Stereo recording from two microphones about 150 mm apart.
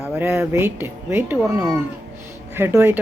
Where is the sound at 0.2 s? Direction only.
15° right (ahead or behind).